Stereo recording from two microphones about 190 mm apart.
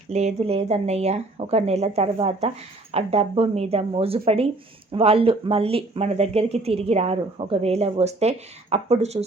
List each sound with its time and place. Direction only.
0.1 s speech: 35° right (ahead or behind)